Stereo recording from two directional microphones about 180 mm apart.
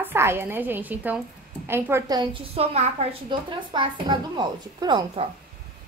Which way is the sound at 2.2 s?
30° right (ahead or behind).